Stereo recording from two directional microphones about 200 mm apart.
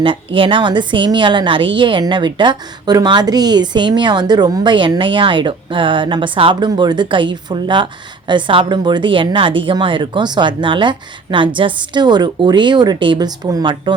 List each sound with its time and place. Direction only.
0.0 s a woman's voice: 25° right (ahead or behind)